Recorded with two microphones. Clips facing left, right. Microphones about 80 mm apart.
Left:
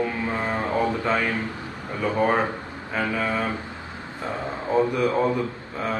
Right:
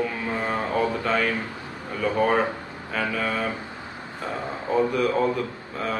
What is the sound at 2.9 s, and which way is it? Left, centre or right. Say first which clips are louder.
Speech: left 1 dB; centre.